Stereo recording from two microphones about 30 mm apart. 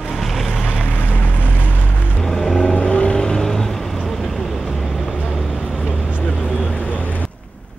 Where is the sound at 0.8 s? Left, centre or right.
Left.